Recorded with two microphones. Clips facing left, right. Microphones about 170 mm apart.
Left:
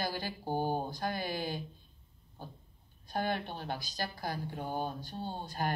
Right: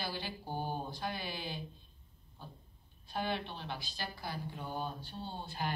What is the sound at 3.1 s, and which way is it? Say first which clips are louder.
Speech: left 3 dB; 45° left (ahead or behind).